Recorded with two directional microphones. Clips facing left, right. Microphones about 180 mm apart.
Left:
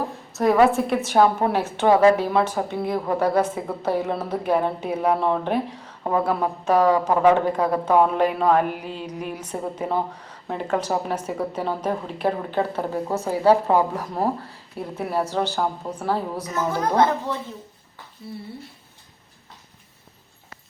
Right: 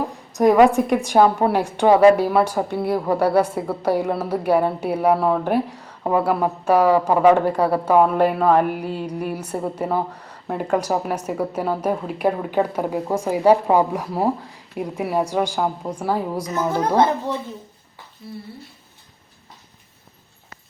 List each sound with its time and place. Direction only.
0.3 s a woman's voice: 15° right (ahead or behind)